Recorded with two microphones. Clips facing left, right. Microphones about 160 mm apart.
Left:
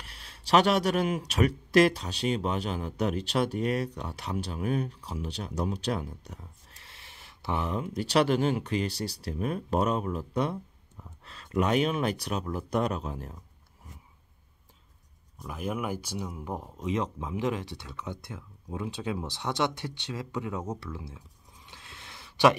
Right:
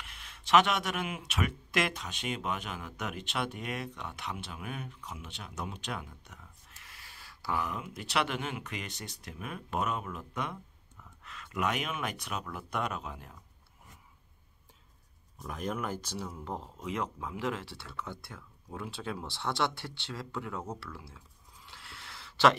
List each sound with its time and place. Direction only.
0.0 s speech: 35° left (ahead or behind)
15.4 s speech: 5° left (ahead or behind)
21.6 s a sound: 20° left (ahead or behind)